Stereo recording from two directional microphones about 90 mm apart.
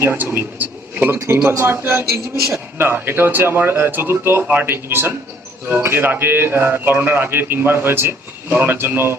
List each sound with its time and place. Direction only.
0.0 s a man's voice: 20° right (ahead or behind)